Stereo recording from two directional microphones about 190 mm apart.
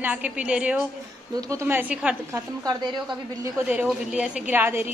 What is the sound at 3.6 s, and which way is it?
A woman's voice, 5° right (ahead or behind).